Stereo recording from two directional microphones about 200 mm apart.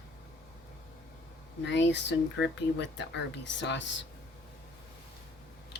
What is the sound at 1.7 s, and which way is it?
Speech, 60° left (ahead or behind).